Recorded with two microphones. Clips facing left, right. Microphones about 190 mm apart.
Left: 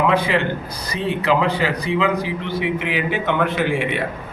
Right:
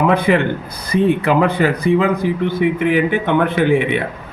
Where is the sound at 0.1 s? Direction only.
55° right (ahead or behind).